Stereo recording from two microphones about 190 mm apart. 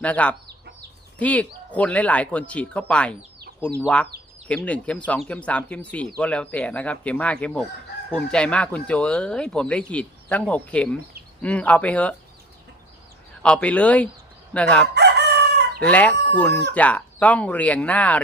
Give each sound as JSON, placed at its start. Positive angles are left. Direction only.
{"t": 0.0, "sound": "speech", "side_deg": 5}
{"t": 0.4, "sound": "chicken", "side_deg": -60}
{"t": 1.2, "sound": "speech", "side_deg": 5}
{"t": 13.4, "sound": "speech", "side_deg": 5}
{"t": 14.9, "sound": "crowing", "side_deg": -60}
{"t": 15.8, "sound": "speech", "side_deg": 10}